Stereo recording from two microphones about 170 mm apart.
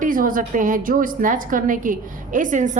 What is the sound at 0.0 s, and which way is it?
A woman's voice, 55° right (ahead or behind).